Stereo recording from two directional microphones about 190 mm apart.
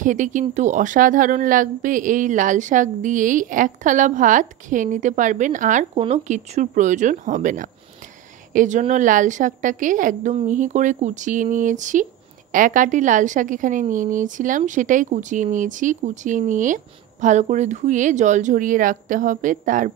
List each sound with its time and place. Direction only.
0.0 s a woman's voice: 40° right (ahead or behind)